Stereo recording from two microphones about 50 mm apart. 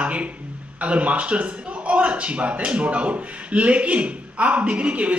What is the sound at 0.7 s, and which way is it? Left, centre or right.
A man's voice, right.